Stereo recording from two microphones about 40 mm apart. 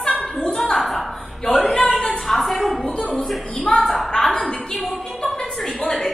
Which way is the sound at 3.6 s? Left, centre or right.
Centre.